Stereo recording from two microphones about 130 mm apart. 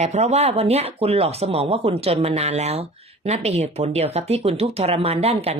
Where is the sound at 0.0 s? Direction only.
60° right (ahead or behind).